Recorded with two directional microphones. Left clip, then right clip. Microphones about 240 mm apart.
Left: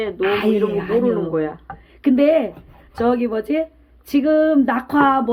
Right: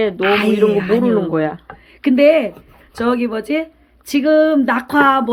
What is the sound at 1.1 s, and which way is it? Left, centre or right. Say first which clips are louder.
Speech: right 3 dB; right.